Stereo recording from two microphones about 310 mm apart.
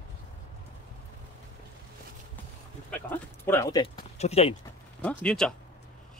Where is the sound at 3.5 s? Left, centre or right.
Centre.